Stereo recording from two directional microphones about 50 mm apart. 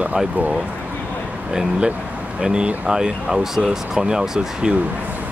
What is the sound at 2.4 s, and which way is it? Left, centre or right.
Speech, centre.